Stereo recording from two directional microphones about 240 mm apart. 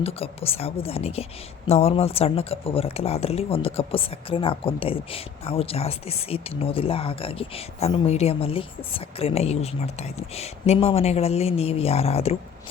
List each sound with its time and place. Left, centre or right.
0.0 s a woman's voice: left